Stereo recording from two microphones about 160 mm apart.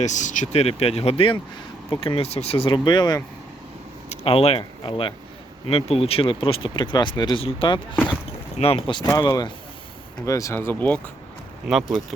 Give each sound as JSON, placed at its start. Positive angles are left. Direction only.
{"t": 0.0, "sound": "speech", "side_deg": 50}
{"t": 4.1, "sound": "speech", "side_deg": 40}
{"t": 11.7, "sound": "speech", "side_deg": 0}